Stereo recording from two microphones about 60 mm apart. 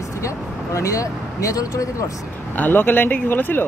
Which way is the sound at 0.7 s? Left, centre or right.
Left.